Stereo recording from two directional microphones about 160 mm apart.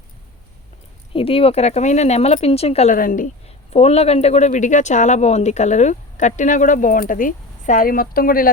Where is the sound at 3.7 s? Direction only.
40° left (ahead or behind).